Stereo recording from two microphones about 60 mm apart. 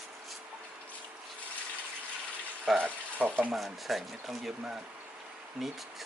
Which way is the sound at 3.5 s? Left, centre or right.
Centre.